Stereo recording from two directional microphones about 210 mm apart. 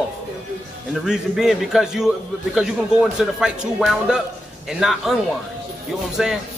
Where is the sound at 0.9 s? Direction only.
Centre (ahead or behind).